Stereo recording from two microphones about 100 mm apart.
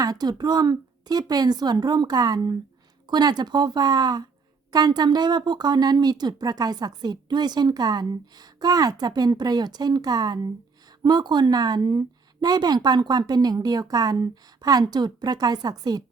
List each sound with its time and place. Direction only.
0.0 s speech: 40° right (ahead or behind)